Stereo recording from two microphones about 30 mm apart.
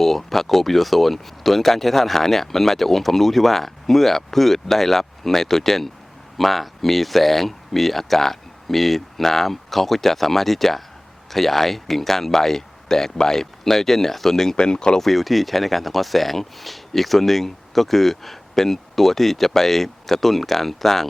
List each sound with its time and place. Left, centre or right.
0.0 s speech: centre
14.5 s speech: left
15.0 s speech: centre